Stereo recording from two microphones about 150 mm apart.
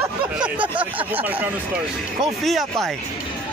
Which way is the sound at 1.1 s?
10° right (ahead or behind).